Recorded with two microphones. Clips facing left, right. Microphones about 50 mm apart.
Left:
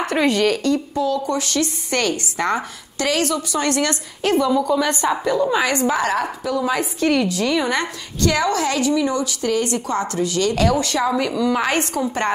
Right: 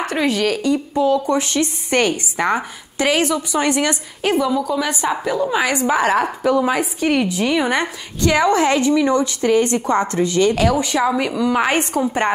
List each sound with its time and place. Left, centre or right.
0.0 s a woman's voice: centre
0.9 s a woman's voice: right
6.4 s a woman's voice: right
6.7 s a woman's voice: centre
10.5 s speech: centre
10.8 s a woman's voice: centre